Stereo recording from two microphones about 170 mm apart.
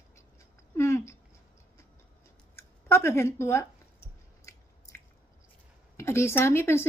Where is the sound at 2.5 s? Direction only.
15° left (ahead or behind).